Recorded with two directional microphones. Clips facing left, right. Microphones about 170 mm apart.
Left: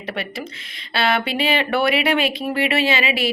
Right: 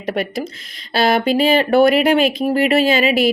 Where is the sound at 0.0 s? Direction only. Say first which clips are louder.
Right 7 dB; 45° right (ahead or behind).